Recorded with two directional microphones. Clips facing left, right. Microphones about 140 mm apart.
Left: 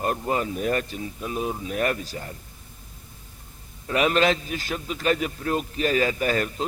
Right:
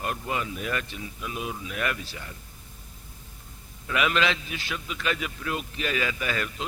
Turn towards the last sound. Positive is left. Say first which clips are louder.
# left 6 dB
turn(degrees=40)  # may be behind; listen again after turning